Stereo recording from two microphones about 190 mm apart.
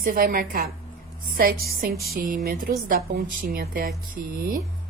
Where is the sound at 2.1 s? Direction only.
50° right (ahead or behind).